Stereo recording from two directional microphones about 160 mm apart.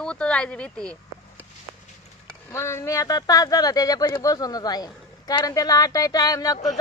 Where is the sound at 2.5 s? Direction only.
15° left (ahead or behind).